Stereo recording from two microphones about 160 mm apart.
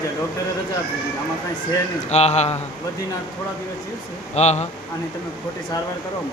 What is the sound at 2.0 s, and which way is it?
Speech, 45° left (ahead or behind).